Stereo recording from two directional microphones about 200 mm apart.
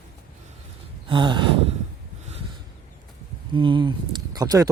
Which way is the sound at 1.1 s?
25° right (ahead or behind).